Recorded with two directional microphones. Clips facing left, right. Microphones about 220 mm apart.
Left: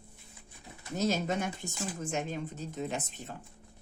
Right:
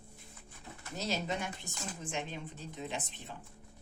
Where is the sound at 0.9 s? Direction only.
50° left (ahead or behind).